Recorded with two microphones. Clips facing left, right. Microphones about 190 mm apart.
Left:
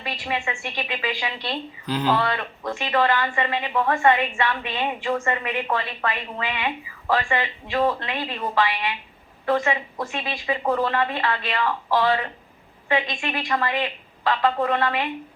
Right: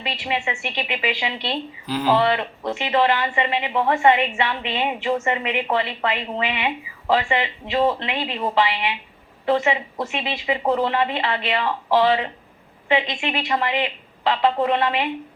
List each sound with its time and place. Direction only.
0.0 s a woman's voice: 20° right (ahead or behind)
1.9 s speech: 5° right (ahead or behind)
2.1 s a woman's voice: 20° right (ahead or behind)